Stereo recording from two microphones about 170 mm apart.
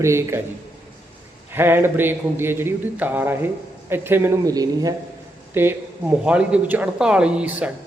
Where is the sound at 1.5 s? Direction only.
15° right (ahead or behind).